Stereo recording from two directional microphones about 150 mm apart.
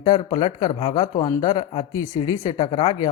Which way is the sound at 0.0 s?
30° left (ahead or behind).